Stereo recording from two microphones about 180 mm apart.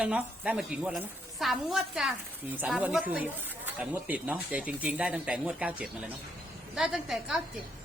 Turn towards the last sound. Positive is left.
turn(degrees=0)  # may be behind; listen again after turning